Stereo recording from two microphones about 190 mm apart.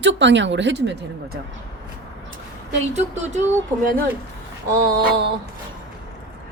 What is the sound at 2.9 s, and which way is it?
Speech, 35° right (ahead or behind).